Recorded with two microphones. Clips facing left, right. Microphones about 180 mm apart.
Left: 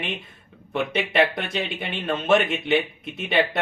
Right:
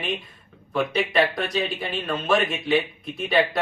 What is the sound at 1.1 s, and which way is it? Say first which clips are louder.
A man's voice: even; 25° left (ahead or behind).